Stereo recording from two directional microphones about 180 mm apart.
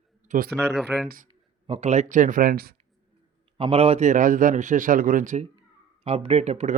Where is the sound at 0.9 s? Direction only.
10° right (ahead or behind).